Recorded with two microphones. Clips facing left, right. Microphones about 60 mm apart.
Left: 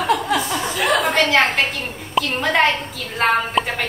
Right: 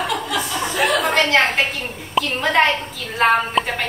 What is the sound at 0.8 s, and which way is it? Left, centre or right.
Speech, centre.